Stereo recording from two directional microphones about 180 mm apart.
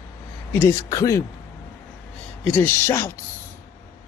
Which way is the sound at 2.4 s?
10° left (ahead or behind).